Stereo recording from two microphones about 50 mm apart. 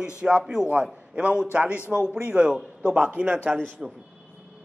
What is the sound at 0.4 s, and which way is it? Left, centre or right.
Speech, centre.